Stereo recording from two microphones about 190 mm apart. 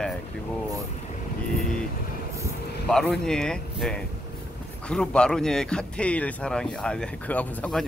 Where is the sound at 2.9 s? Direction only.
5° left (ahead or behind).